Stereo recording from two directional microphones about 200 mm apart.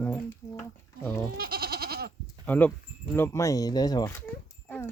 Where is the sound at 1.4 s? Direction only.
50° right (ahead or behind).